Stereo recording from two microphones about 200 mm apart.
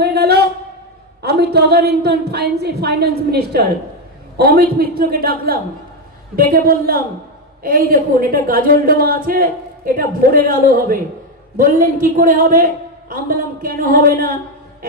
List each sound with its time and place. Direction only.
0.0 s a woman's voice: 55° right (ahead or behind)